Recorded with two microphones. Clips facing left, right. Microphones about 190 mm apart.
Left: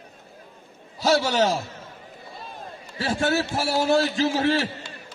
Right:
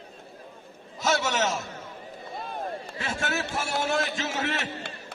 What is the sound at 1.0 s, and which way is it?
Speech, 35° left (ahead or behind).